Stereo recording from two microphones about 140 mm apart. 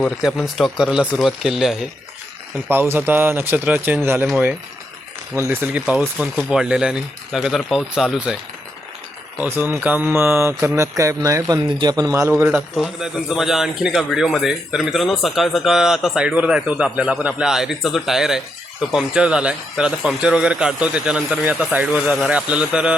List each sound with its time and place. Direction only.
0.0 s a man's voice: centre (ahead or behind)
2.6 s speech: 15° right (ahead or behind)
5.3 s a man's voice: 15° right (ahead or behind)
9.4 s speech: 15° right (ahead or behind)
12.4 s speech: 15° right (ahead or behind)
12.7 s a man's voice: centre (ahead or behind)